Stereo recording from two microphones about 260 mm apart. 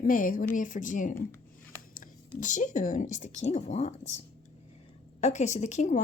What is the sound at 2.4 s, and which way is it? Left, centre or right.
Speech, left.